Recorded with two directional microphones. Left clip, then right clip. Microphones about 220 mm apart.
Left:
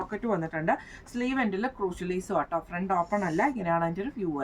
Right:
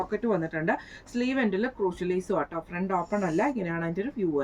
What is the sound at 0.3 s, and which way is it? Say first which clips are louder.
A woman's voice: left 1 dB; 15° left (ahead or behind).